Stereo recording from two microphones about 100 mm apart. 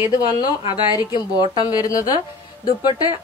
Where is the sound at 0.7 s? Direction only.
45° left (ahead or behind).